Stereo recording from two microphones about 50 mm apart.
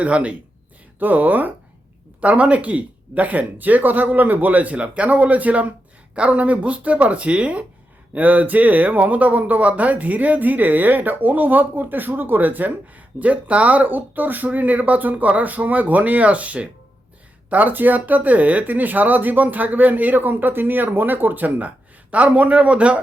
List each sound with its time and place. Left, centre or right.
0.0 s speech: right
0.9 s speech: right